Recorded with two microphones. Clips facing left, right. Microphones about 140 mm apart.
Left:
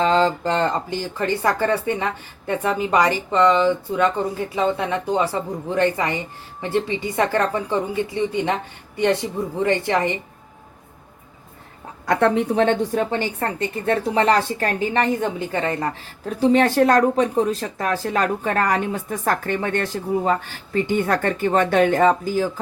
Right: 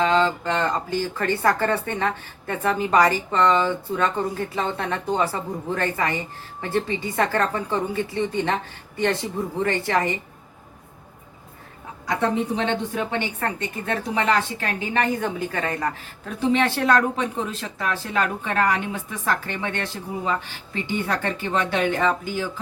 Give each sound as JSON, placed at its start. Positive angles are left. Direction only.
{"t": 0.0, "sound": "speech", "side_deg": 35}
{"t": 0.9, "sound": "speech", "side_deg": 15}
{"t": 9.6, "sound": "a woman's voice", "side_deg": 20}
{"t": 12.0, "sound": "a woman's voice", "side_deg": 65}
{"t": 12.6, "sound": "a woman's voice", "side_deg": 40}
{"t": 15.2, "sound": "speech", "side_deg": 25}